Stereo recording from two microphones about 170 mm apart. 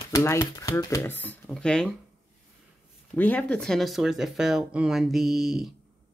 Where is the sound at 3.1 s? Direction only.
10° left (ahead or behind).